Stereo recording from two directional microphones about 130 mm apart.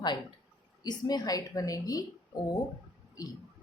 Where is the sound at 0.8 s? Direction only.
30° left (ahead or behind).